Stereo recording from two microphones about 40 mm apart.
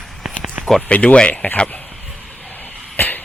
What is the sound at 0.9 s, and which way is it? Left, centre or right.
Speech, left.